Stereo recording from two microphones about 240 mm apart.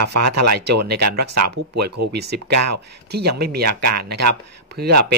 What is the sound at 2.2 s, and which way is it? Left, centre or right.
Speech, right.